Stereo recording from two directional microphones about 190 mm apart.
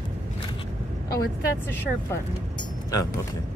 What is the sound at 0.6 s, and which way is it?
Speech, 20° left (ahead or behind).